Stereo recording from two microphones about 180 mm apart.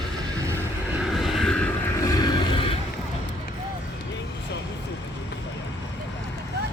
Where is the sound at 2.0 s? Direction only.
20° left (ahead or behind).